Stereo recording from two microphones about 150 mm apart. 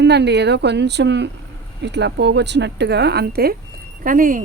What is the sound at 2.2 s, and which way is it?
Speech, 90° right.